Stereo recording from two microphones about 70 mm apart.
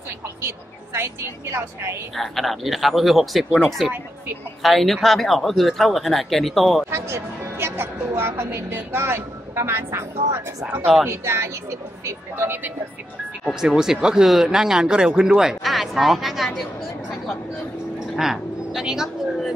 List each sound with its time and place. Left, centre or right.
0.4 s a woman's voice: right
2.1 s speech: centre
6.9 s a woman's voice: right
13.6 s speech: centre
17.9 s a sound: centre